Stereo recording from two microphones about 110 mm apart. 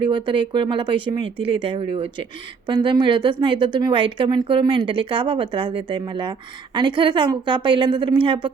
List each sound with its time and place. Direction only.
0.0 s a woman's voice: 45° right (ahead or behind)